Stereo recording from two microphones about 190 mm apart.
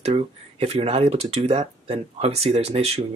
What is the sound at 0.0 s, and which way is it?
Speech, 30° right (ahead or behind).